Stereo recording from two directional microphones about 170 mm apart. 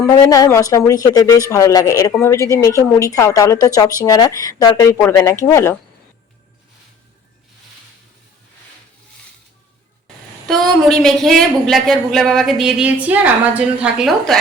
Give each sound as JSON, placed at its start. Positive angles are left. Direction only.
{"t": 0.0, "sound": "a woman's voice", "side_deg": 20}
{"t": 10.5, "sound": "speech", "side_deg": 0}